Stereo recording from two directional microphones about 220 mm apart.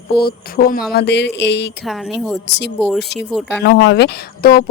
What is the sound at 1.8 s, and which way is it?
Speech, centre (ahead or behind).